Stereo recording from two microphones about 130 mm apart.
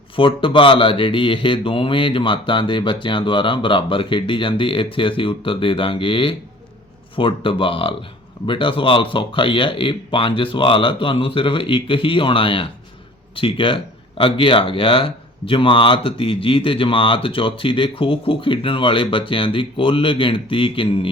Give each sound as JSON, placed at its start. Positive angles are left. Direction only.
{"t": 0.2, "sound": "speech", "side_deg": 40}